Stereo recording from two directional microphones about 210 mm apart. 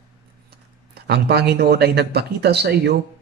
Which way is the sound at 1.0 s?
50° right (ahead or behind).